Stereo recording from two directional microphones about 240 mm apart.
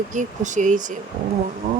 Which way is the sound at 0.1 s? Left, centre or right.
Right.